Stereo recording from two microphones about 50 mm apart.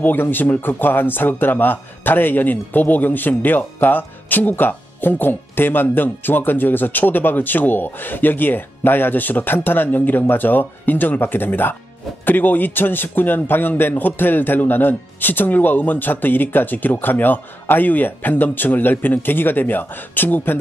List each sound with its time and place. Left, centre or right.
0.0 s speech: left